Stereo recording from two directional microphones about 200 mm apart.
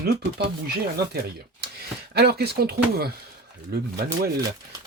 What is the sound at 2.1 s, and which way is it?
Speech, 55° right (ahead or behind).